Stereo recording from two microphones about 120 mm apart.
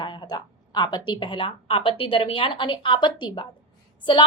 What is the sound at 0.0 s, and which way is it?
A woman's voice, 40° left (ahead or behind).